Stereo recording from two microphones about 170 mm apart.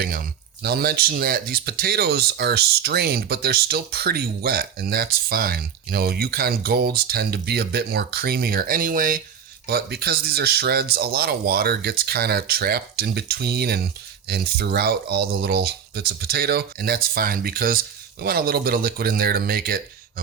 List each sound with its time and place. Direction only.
0.0 s speech: 60° right (ahead or behind)
9.6 s speech: 65° right (ahead or behind)